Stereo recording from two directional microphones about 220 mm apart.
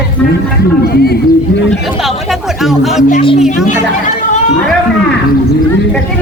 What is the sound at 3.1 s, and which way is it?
Speech, 25° left (ahead or behind).